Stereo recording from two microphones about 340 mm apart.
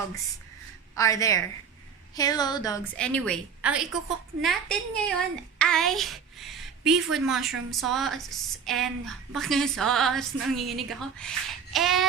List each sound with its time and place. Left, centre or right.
0.9 s a woman's voice: centre